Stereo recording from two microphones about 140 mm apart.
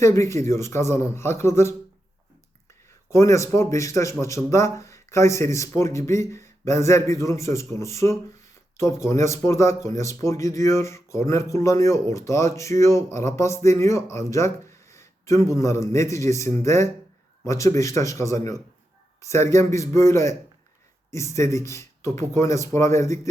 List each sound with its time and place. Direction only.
0.0 s speech: 20° left (ahead or behind)
3.1 s speech: 20° left (ahead or behind)